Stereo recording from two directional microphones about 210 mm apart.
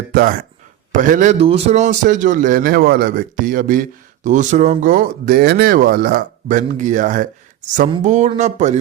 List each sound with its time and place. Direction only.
0.1 s a man's voice: 40° right (ahead or behind)